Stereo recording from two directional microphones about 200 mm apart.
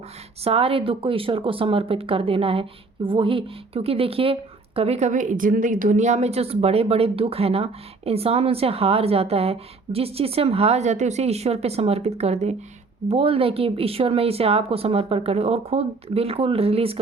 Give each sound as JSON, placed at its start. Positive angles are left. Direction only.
{"t": 0.4, "sound": "speech", "side_deg": -30}